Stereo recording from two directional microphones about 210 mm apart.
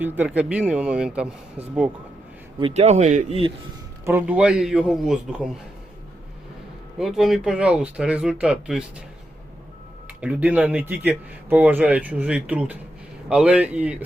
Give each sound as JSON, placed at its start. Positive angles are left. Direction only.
{"t": 0.0, "sound": "speech", "side_deg": -5}
{"t": 2.6, "sound": "speech", "side_deg": -30}
{"t": 4.0, "sound": "speech", "side_deg": -10}
{"t": 7.0, "sound": "speech", "side_deg": 0}
{"t": 10.2, "sound": "speech", "side_deg": -5}